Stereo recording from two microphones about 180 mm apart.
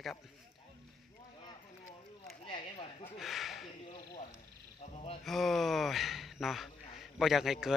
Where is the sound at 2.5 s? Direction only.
30° left (ahead or behind).